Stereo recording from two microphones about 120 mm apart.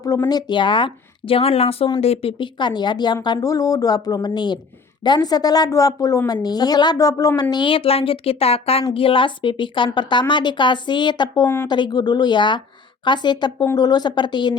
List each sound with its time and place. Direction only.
0.0 s speech: 30° left (ahead or behind); by 2.3 s 55° left (ahead or behind)
2.4 s a woman's voice: 40° left (ahead or behind)
7.5 s a woman's voice: 45° left (ahead or behind)
11.4 s a woman's voice: 20° left (ahead or behind)
11.7 s a woman's voice: 35° left (ahead or behind)